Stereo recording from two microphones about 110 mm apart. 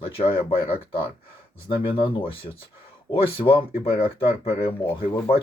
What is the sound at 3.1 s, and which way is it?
Speech, 50° left (ahead or behind).